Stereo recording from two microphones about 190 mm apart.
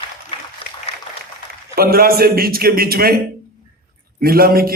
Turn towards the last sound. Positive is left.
turn(degrees=-50)  # may be behind; listen again after turning